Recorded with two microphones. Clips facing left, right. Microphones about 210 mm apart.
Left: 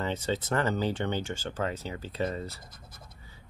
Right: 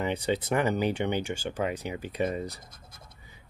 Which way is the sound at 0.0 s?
15° right (ahead or behind).